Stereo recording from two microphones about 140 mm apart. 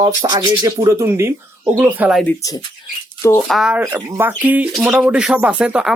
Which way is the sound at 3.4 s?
Centre (ahead or behind).